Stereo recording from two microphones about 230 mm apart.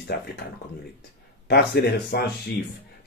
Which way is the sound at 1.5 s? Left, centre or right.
Left.